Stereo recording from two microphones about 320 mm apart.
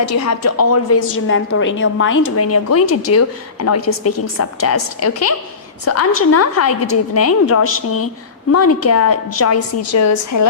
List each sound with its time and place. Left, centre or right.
0.2 s a woman's voice: left